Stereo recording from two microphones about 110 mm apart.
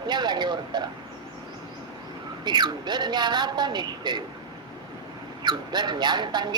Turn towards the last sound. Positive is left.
turn(degrees=-40)  # may be behind; listen again after turning